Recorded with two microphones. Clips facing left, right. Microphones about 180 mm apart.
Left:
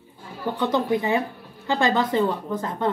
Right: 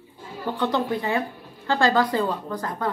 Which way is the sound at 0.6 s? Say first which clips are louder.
Left 2 dB; 20° left (ahead or behind).